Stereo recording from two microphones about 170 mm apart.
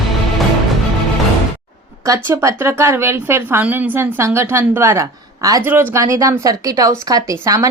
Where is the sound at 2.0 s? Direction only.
15° right (ahead or behind).